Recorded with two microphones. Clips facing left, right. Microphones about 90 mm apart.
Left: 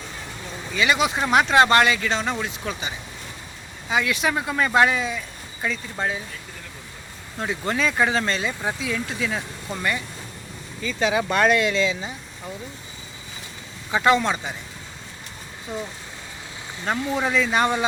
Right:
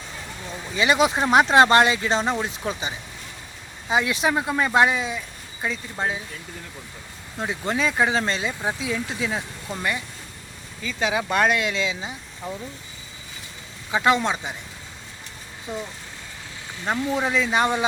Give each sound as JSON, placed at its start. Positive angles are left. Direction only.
{"t": 0.7, "sound": "speech", "side_deg": -30}
{"t": 7.3, "sound": "speech", "side_deg": -10}
{"t": 10.8, "sound": "speech", "side_deg": -5}
{"t": 13.9, "sound": "speech", "side_deg": -5}
{"t": 15.7, "sound": "speech", "side_deg": -15}